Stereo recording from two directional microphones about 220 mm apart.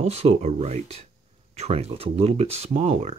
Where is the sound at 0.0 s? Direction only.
30° right (ahead or behind).